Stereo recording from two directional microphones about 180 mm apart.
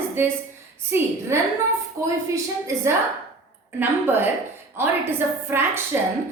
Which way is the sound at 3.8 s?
10° right (ahead or behind).